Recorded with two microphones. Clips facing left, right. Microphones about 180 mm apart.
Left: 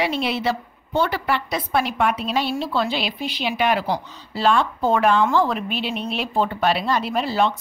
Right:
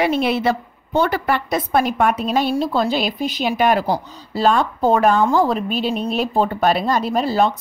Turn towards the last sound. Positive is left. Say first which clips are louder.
# right 3 dB
turn(degrees=-40)  # may be behind; listen again after turning